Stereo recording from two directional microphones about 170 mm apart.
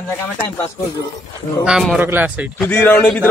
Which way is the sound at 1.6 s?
Centre (ahead or behind).